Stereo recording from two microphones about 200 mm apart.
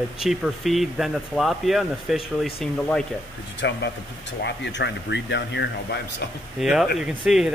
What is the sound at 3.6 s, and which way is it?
Speech, 60° left (ahead or behind).